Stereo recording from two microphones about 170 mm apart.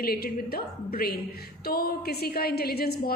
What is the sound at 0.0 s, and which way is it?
A woman's voice, 65° left (ahead or behind).